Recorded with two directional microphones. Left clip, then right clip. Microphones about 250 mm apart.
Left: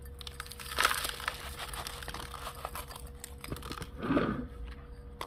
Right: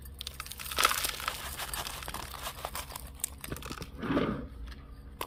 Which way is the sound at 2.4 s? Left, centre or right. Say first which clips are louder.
Right 2 dB; right.